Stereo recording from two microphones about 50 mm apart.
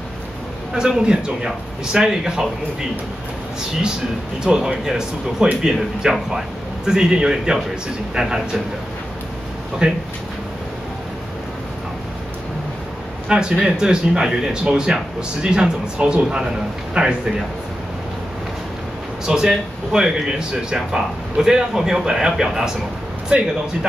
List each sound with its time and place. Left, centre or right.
0.7 s speech: centre
4.4 s speech: centre
9.8 s speech: centre
13.3 s speech: centre
19.2 s speech: centre